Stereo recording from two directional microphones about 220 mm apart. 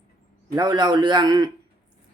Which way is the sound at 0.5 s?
20° right (ahead or behind).